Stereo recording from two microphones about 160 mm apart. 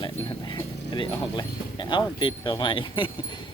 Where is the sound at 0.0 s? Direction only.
25° left (ahead or behind).